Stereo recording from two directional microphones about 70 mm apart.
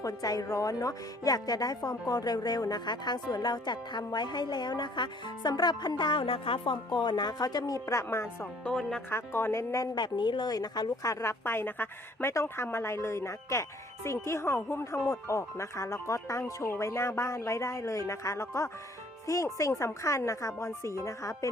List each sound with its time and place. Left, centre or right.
0.0 s speech: left
8.1 s speech: left
8.7 s speech: centre
9.0 s speech: left
9.9 s a woman's voice: left
11.0 s speech: left
12.3 s speech: left
15.1 s speech: left